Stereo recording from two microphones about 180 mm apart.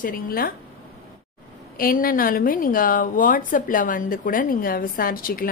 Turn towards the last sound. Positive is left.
turn(degrees=55)  # may be behind; listen again after turning